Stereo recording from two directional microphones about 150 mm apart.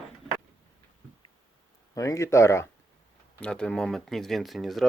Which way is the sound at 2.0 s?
20° left (ahead or behind).